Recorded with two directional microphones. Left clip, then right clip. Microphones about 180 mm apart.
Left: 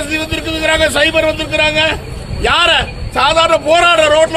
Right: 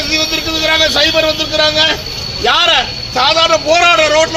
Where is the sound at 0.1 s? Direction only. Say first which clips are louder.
Right 6 dB; 25° left (ahead or behind).